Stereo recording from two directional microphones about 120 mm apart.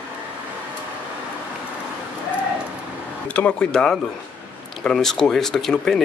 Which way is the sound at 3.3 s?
10° left (ahead or behind).